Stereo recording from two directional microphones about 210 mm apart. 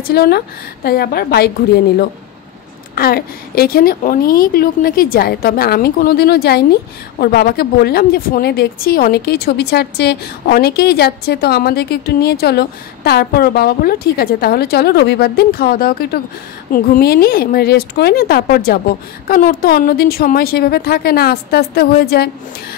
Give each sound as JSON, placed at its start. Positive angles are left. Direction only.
{"t": 0.0, "sound": "a woman's voice", "side_deg": 45}
{"t": 3.0, "sound": "a woman's voice", "side_deg": 45}